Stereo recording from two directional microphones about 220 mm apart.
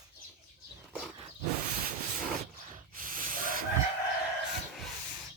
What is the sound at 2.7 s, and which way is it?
Snort, 40° right (ahead or behind).